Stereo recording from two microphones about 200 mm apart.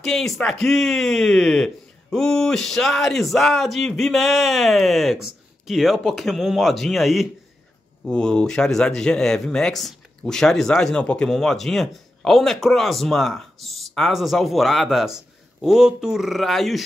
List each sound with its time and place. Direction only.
0.0 s speech: centre (ahead or behind)